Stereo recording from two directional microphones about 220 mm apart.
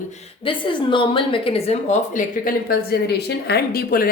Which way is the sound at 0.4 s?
20° left (ahead or behind).